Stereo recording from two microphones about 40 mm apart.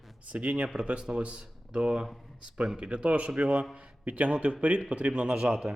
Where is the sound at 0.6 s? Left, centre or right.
Right.